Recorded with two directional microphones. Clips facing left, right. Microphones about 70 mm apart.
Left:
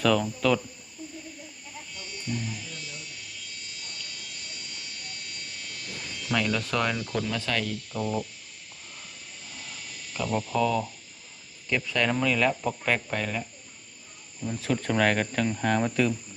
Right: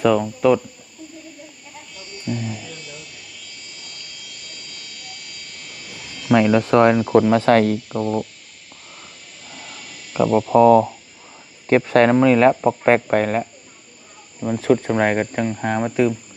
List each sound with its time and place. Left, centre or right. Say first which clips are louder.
0.0 s speech: right 7 dB; centre
2.0 s music: right 7 dB; right
5.6 s a sound: right 2 dB; centre
6.2 s speech: right 12 dB; right
7.9 s speech: right 4 dB; right
10.5 s speech: right 16 dB; right
12.0 s speech: right 9 dB; right
14.8 s speech: right 6 dB; right